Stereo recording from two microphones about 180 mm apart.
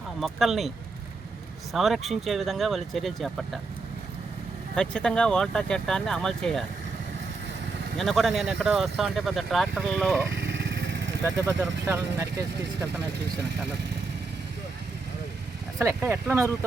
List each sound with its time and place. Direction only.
0.2 s speech: centre (ahead or behind)
1.7 s speech: centre (ahead or behind)
4.7 s speech: 5° left (ahead or behind)
7.9 s speech: centre (ahead or behind)
10.3 s motorcycle: 85° right
11.9 s speech: 10° right (ahead or behind)
15.8 s speech: 15° right (ahead or behind)